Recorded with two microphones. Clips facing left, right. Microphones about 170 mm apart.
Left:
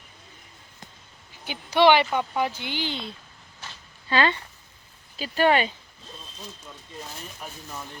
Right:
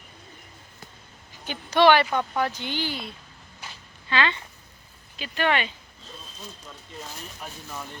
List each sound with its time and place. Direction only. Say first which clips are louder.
1.5 s speech: even; 15° left (ahead or behind)
4.1 s speech: left 3 dB; 40° left (ahead or behind)